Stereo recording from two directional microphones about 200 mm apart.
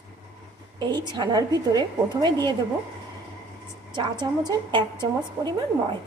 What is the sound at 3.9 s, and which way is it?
A woman's voice, 20° right (ahead or behind).